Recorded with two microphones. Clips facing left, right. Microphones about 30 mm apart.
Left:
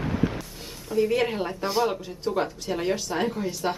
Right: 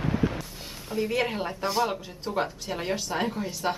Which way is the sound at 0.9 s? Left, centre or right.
Centre.